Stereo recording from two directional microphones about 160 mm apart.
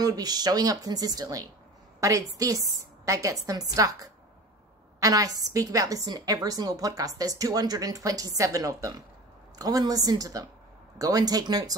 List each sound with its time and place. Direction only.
0.0 s a woman's voice: 25° right (ahead or behind)